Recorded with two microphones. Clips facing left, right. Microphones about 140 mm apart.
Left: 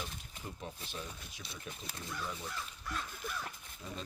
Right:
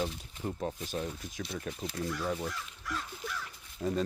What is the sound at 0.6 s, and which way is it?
Speech, 40° right (ahead or behind).